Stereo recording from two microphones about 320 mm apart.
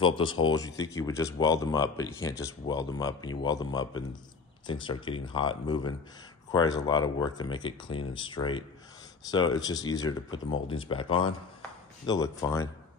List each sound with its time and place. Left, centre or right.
0.0 s speech: centre